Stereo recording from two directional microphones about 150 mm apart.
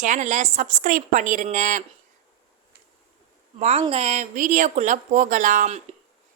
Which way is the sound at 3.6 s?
45° right (ahead or behind).